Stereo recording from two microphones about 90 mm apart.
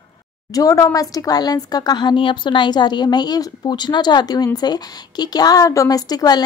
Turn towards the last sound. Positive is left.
turn(degrees=45)  # may be behind; listen again after turning